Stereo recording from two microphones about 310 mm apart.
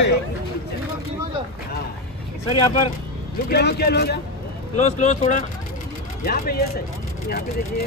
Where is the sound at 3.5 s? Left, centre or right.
Left.